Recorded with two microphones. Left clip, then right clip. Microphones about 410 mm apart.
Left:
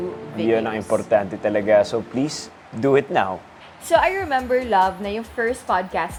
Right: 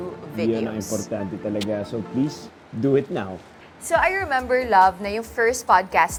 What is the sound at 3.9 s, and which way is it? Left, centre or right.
A woman's voice, right.